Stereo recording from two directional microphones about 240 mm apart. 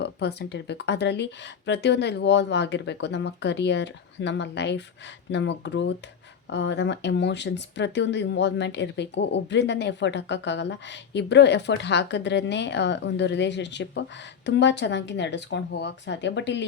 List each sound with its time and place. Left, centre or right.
0.0 s speech: left